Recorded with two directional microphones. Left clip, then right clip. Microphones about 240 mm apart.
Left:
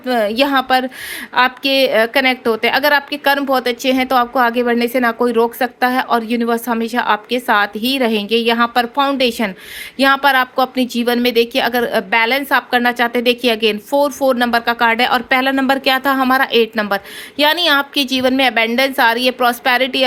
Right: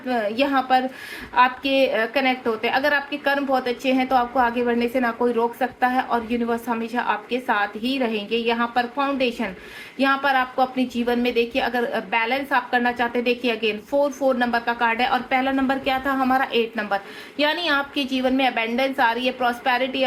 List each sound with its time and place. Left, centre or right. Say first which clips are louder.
0.0 s a woman's voice: left 7 dB; left